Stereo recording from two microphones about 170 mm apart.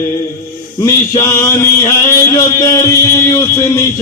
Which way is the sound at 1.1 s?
20° left (ahead or behind).